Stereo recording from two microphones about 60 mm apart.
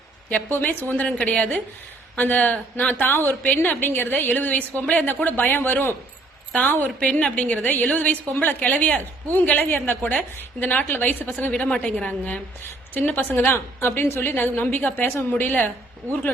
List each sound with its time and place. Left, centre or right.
0.3 s a woman's voice: left